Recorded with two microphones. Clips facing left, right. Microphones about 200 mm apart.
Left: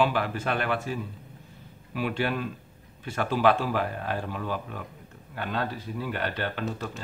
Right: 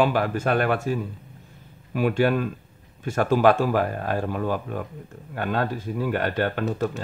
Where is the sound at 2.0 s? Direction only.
45° right (ahead or behind).